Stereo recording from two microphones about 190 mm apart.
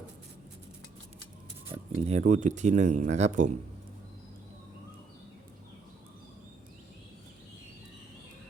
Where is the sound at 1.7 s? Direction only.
30° right (ahead or behind).